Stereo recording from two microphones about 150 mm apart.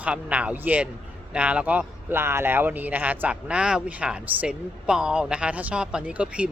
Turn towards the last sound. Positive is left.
turn(degrees=-10)  # may be behind; listen again after turning